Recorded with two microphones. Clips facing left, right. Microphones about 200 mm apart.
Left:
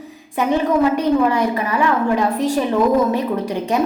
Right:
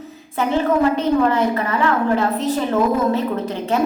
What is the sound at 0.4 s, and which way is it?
A woman's voice, 15° left (ahead or behind).